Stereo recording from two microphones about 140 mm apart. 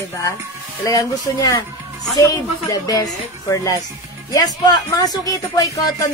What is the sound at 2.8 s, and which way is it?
Speech, 25° left (ahead or behind).